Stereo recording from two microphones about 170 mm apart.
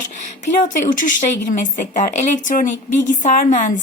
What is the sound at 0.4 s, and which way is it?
A woman's voice, 50° left (ahead or behind).